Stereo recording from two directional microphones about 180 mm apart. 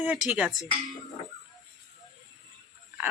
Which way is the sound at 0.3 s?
5° right (ahead or behind).